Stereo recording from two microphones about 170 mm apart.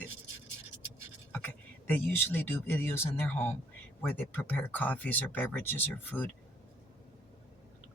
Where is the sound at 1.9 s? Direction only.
10° left (ahead or behind).